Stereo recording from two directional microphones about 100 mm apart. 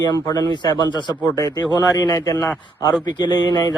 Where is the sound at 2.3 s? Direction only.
25° left (ahead or behind).